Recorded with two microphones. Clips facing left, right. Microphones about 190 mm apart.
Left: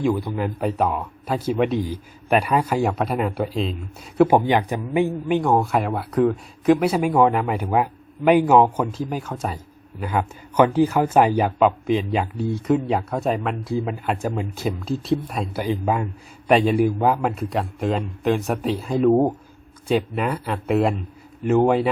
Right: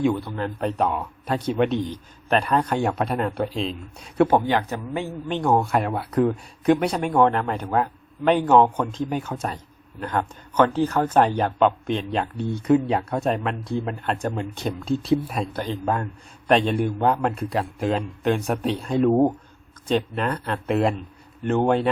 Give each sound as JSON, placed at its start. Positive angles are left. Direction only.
{"t": 0.2, "sound": "speech", "side_deg": 10}
{"t": 4.3, "sound": "speech", "side_deg": 15}